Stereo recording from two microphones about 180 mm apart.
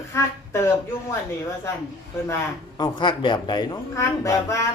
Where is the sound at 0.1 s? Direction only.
15° left (ahead or behind).